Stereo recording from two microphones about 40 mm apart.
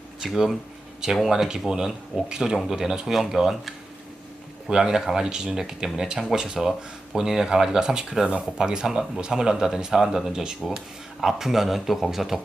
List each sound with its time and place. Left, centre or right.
0.2 s speech: centre